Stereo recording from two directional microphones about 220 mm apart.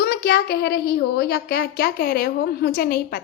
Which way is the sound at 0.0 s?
45° left (ahead or behind).